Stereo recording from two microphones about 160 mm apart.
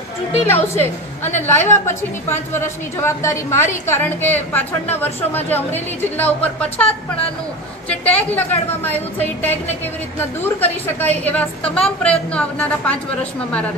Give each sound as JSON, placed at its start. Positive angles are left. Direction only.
{"t": 0.5, "sound": "a woman's voice", "side_deg": 15}
{"t": 7.9, "sound": "a woman's voice", "side_deg": 10}
{"t": 10.6, "sound": "a woman's voice", "side_deg": 10}